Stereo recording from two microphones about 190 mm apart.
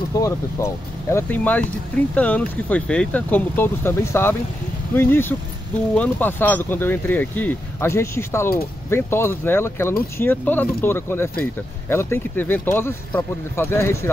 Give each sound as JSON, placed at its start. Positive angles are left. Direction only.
{"t": 0.1, "sound": "speech", "side_deg": 15}